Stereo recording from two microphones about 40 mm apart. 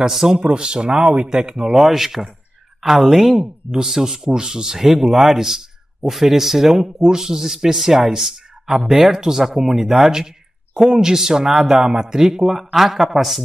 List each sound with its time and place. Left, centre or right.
0.0 s speech: centre
0.4 s speech: right
1.2 s speech: centre